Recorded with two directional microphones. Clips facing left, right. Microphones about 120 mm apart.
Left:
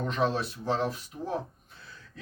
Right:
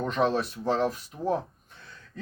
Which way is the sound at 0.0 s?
40° right (ahead or behind).